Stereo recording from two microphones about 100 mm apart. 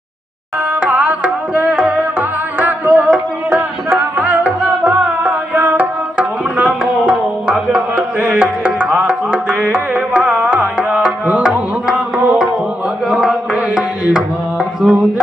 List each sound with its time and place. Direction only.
0.7 s music: 15° right (ahead or behind)